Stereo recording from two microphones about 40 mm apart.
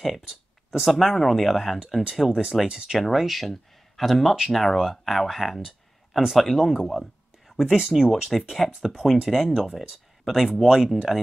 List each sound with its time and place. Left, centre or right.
0.7 s speech: centre
3.0 s speech: centre
4.7 s speech: centre
7.6 s speech: centre
7.9 s speech: centre